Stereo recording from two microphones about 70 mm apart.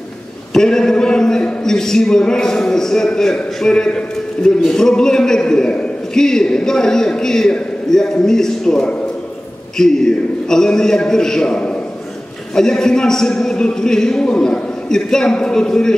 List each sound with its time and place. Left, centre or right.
0.5 s a man's voice: centre